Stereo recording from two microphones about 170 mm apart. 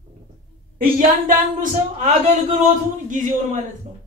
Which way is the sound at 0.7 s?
55° right (ahead or behind).